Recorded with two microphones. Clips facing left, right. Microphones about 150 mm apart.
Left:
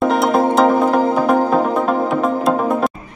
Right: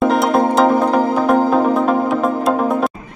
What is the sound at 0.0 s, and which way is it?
Music, centre (ahead or behind).